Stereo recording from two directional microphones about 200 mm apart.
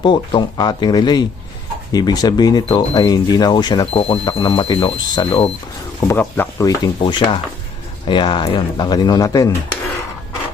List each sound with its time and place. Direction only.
0.0 s speech: 25° left (ahead or behind)
6.0 s speech: 10° left (ahead or behind)